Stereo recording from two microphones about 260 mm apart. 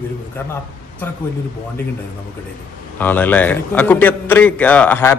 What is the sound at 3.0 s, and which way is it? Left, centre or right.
A man's voice, centre.